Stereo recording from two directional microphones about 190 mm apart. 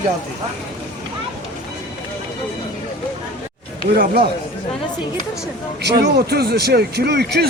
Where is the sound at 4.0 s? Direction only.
55° right (ahead or behind).